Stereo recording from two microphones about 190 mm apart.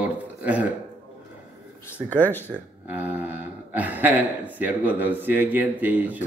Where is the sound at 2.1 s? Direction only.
10° left (ahead or behind).